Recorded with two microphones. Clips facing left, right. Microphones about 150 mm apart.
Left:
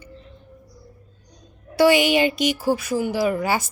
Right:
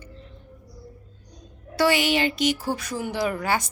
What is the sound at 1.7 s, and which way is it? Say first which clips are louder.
Speech: left 5 dB; 15° left (ahead or behind).